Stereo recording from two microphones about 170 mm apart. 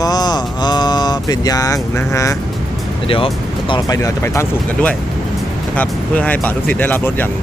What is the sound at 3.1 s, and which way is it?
Speech, 30° left (ahead or behind).